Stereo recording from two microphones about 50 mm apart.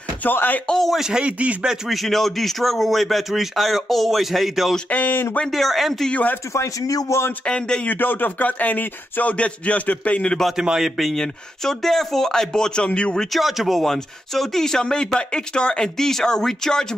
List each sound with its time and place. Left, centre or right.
0.2 s speech: left
0.9 s a man's voice: centre
1.2 s speech: right
1.9 s speech: centre
4.8 s speech: left
5.5 s speech: centre
6.5 s speech: left
7.4 s speech: centre
7.9 s speech: left
10.5 s a man's voice: centre
11.1 s speech: centre
13.3 s speech: centre
13.8 s speech: centre